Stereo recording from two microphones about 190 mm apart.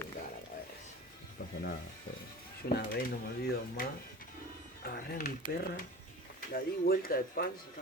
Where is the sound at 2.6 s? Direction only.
50° left (ahead or behind).